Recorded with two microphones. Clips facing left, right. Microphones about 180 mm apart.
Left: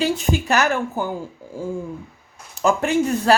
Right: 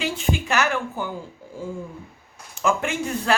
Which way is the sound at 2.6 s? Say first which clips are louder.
Left 5 dB; 40° left (ahead or behind).